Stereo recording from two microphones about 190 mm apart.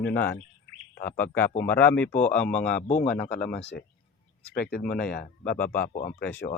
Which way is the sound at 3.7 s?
55° left (ahead or behind).